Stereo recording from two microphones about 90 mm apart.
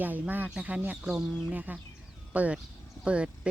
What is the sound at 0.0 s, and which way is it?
Speech, 20° right (ahead or behind).